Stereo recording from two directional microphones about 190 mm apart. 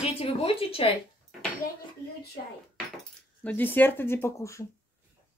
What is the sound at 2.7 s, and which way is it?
Speech, 5° left (ahead or behind).